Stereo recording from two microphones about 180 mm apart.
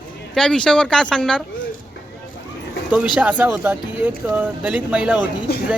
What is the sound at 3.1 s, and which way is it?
Speech, 10° right (ahead or behind).